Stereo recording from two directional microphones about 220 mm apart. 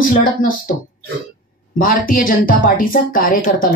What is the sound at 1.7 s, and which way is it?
A woman's voice, 40° left (ahead or behind).